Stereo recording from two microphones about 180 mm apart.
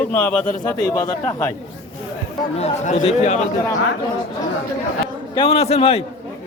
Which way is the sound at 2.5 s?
35° left (ahead or behind).